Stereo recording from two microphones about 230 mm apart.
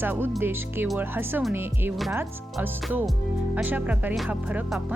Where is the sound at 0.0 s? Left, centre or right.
Centre.